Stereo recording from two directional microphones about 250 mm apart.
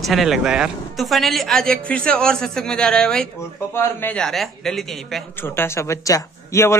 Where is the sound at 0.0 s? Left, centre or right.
Centre.